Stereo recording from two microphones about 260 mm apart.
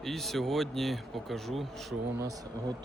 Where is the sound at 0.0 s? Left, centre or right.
Centre.